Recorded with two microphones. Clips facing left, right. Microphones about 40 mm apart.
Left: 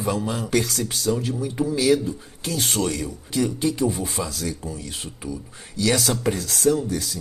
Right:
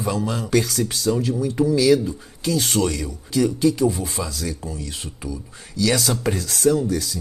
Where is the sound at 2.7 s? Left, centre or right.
Right.